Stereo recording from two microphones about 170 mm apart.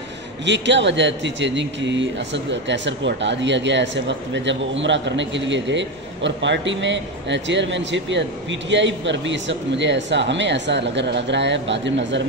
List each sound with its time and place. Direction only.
0.5 s a man's voice: 90° right